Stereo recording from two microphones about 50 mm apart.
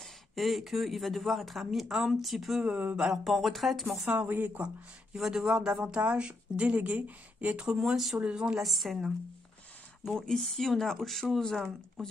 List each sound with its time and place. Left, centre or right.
0.0 s speech: centre
2.6 s speech: right
3.1 s speech: centre
4.3 s speech: right
5.1 s speech: centre; by 7.6 s right
7.6 s speech: centre
8.2 s speech: right
8.6 s speech: centre
10.2 s speech: centre